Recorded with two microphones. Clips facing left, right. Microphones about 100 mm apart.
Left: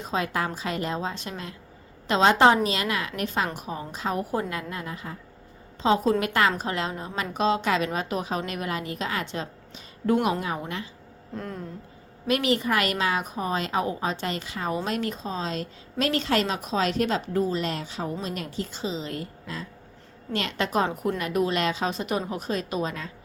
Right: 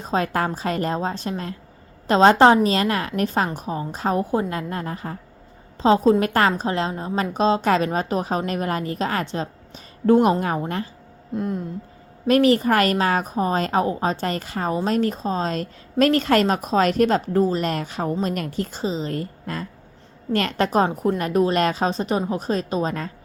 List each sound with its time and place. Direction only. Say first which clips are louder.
0.0 s a woman's voice: right 5 dB; 40° right (ahead or behind)
4.2 s a woman's voice: right 5 dB; 25° right (ahead or behind)
11.3 s a sound: right 9 dB; 20° right (ahead or behind)
12.3 s a woman's voice: right 7 dB; 40° right (ahead or behind)